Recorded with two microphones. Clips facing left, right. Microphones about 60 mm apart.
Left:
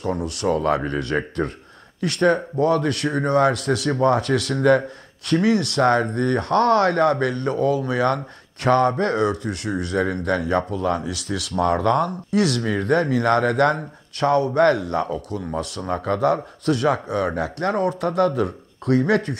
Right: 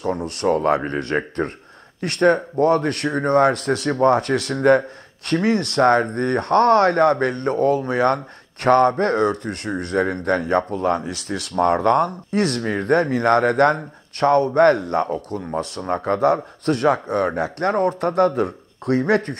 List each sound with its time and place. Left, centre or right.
0.1 s speech: right